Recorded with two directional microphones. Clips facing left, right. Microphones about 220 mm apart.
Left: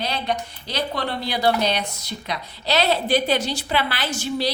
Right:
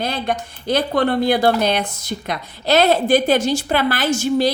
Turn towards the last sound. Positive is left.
turn(degrees=-45)  # may be behind; listen again after turning